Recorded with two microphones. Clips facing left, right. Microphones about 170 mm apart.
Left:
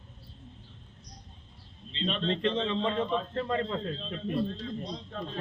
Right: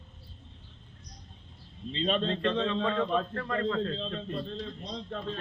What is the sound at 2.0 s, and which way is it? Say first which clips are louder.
Speech: right 4 dB; 45° right (ahead or behind).